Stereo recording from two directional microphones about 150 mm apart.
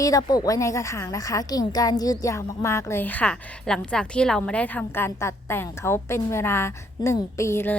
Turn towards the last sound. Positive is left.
turn(degrees=15)  # may be behind; listen again after turning